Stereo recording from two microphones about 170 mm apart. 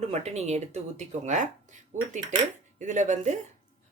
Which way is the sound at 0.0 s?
40° right (ahead or behind).